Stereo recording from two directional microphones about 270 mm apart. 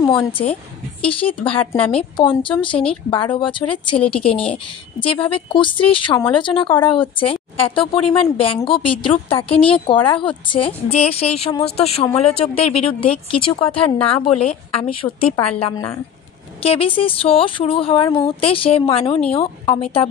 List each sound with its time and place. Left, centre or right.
0.0 s speech: centre
5.0 s speech: centre